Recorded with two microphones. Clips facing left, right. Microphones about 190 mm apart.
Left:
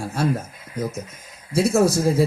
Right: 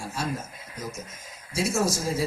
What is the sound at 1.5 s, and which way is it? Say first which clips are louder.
Speech: left 8 dB; 60° left (ahead or behind).